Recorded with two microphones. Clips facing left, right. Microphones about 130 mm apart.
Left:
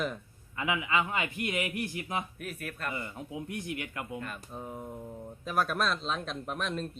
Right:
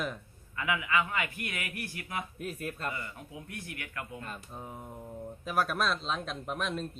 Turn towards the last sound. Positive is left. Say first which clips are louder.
# even
turn(degrees=0)  # may be behind; listen again after turning